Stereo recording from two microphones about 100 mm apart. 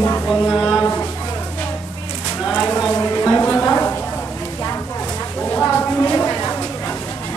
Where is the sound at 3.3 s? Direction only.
15° left (ahead or behind).